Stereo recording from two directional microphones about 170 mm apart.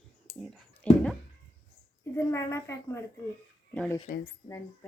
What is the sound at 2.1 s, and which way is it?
A woman's voice, 15° left (ahead or behind).